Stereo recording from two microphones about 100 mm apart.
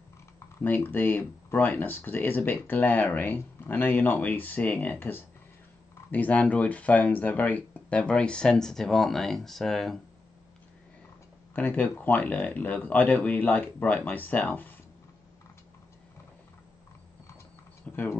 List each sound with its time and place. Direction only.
0.6 s speech: 20° left (ahead or behind); by 9.9 s centre (ahead or behind)
11.5 s speech: 15° left (ahead or behind)
17.8 s tick-tock: 15° left (ahead or behind)